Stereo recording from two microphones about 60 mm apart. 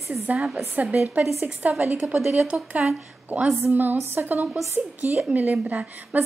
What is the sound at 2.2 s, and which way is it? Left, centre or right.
Speech, centre.